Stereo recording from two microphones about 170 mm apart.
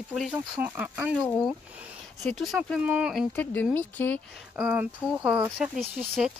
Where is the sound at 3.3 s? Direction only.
10° left (ahead or behind).